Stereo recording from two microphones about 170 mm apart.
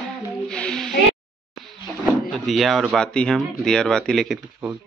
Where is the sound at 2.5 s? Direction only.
Centre (ahead or behind).